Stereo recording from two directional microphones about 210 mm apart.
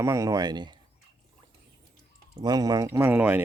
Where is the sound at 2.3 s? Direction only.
20° right (ahead or behind).